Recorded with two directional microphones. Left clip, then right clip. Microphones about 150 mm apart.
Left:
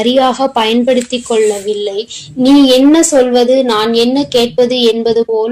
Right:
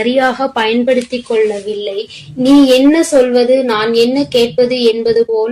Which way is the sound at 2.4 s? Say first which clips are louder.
Left 1 dB; 40° left (ahead or behind).